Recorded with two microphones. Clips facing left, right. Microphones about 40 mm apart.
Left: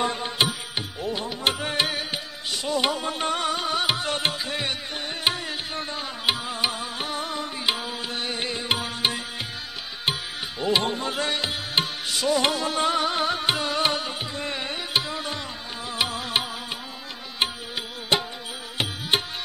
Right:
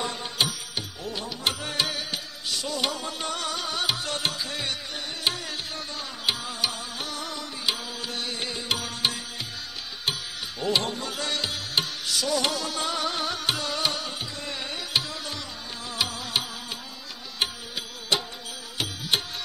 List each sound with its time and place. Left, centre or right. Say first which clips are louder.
0.0 s music: left 4 dB; left
10.6 s music: left 3 dB; left
18.1 s music: left 3 dB; left